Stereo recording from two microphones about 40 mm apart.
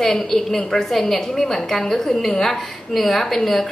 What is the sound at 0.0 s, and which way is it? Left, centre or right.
A woman's voice, centre.